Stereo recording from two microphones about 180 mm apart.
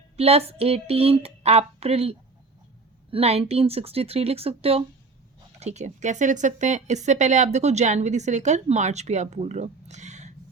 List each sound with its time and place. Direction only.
0.2 s speech: 35° right (ahead or behind)